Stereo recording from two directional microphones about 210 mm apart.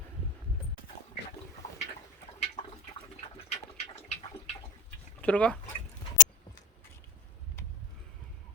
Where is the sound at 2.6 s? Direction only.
35° left (ahead or behind).